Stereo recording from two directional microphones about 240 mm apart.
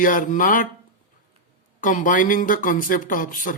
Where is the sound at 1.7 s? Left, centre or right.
Left.